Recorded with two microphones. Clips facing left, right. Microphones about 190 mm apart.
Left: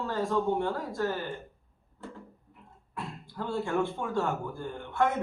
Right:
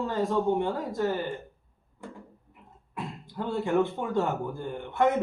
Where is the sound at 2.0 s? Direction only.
15° right (ahead or behind).